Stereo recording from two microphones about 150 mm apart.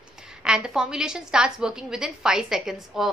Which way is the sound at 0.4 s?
5° right (ahead or behind).